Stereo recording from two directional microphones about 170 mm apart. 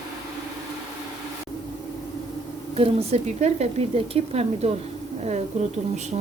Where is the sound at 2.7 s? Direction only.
35° right (ahead or behind).